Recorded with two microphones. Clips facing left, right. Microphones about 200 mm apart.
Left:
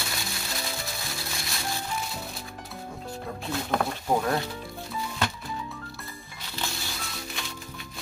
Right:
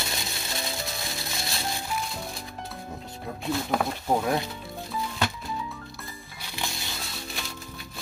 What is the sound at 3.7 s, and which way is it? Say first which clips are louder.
Speech: left 1 dB; 5° right (ahead or behind).